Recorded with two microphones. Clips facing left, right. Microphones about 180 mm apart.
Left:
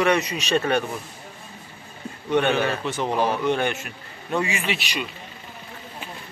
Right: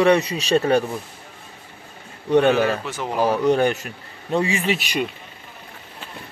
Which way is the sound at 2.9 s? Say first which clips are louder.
Right 1 dB; 5° right (ahead or behind).